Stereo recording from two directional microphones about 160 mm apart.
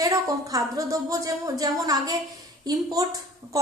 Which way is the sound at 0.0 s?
20° right (ahead or behind).